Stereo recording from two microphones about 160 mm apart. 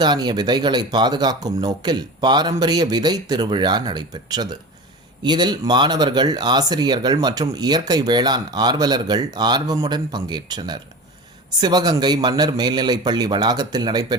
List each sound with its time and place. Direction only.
0.0 s speech: 25° right (ahead or behind)